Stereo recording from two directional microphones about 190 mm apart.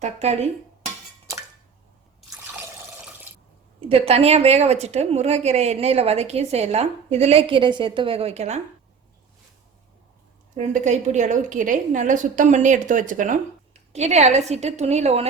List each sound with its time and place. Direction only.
0.0 s speech: 35° right (ahead or behind)
2.4 s drip: 10° right (ahead or behind)
3.8 s speech: 30° right (ahead or behind)
10.6 s speech: 40° right (ahead or behind)